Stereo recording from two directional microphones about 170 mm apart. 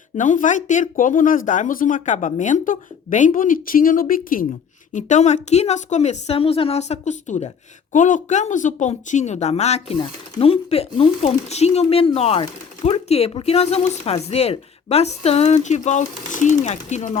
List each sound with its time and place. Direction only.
0.2 s speech: 50° left (ahead or behind)
4.9 s speech: 45° left (ahead or behind)